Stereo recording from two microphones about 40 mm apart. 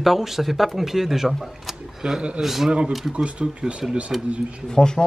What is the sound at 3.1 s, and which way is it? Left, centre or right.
Speech, right.